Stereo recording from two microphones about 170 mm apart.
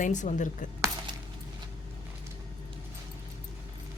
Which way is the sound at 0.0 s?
45° left (ahead or behind).